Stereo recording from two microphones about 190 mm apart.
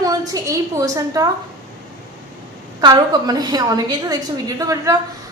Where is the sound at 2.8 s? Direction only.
20° right (ahead or behind).